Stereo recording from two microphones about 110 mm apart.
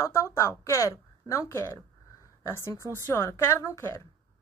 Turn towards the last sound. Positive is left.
turn(degrees=25)  # may be behind; listen again after turning